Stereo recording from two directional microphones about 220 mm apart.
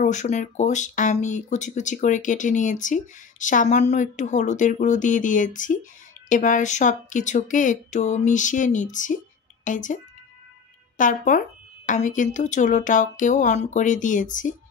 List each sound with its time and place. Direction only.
0.0 s speech: 35° left (ahead or behind)
11.0 s speech: 35° left (ahead or behind)